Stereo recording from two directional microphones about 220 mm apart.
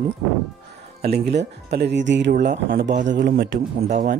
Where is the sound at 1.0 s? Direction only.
50° right (ahead or behind).